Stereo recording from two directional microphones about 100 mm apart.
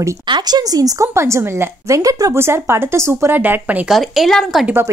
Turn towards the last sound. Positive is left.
turn(degrees=0)  # may be behind; listen again after turning